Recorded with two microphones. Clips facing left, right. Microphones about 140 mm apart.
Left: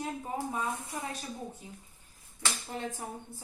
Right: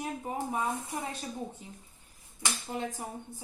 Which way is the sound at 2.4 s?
15° right (ahead or behind).